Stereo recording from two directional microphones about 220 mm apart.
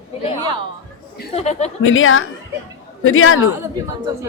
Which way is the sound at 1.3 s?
30° left (ahead or behind).